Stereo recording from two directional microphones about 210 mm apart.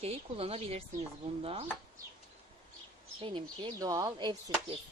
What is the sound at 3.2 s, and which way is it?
Speech, 25° right (ahead or behind).